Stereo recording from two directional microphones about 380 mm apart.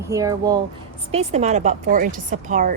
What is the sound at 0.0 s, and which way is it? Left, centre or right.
Speech, centre.